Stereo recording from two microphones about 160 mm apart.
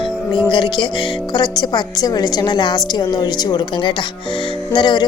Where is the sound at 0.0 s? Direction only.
30° left (ahead or behind).